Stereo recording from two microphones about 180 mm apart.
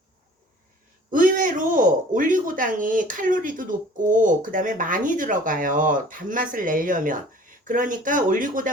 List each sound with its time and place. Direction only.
1.1 s speech: 50° right (ahead or behind)